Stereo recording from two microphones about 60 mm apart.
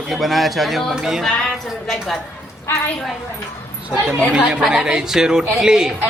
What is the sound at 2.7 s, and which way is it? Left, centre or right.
Speech, left.